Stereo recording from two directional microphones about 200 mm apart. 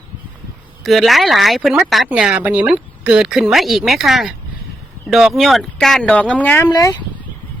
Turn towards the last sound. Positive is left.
turn(degrees=15)  # may be behind; listen again after turning